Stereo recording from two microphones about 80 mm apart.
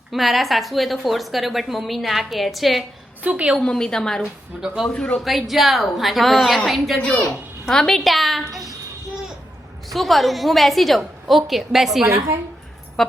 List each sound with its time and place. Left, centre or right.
0.1 s a woman's voice: centre
3.2 s a woman's voice: centre
3.6 s a woman's voice: centre
4.2 s a woman's voice: centre
4.9 s a woman's voice: centre
5.2 s a woman's voice: centre
9.9 s a woman's voice: centre
13.0 s music: centre